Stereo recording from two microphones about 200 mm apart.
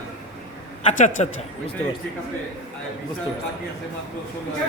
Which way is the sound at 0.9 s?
40° left (ahead or behind).